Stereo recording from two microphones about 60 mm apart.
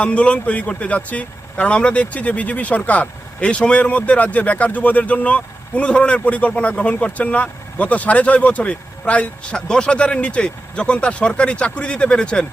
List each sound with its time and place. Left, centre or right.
0.0 s speech: left